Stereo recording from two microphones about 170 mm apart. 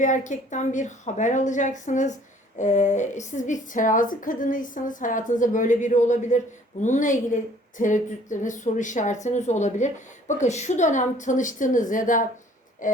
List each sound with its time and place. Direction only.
0.0 s a woman's voice: 50° left (ahead or behind)